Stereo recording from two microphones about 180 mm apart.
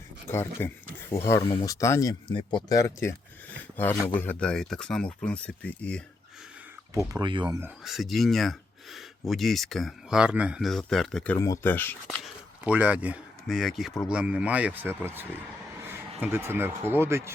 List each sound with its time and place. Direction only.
0.3 s speech: 15° left (ahead or behind)
6.9 s speech: 15° right (ahead or behind)
7.4 s speech: 10° right (ahead or behind)
7.9 s speech: centre (ahead or behind)
11.3 s speech: 15° left (ahead or behind)
12.2 s speech: 5° right (ahead or behind)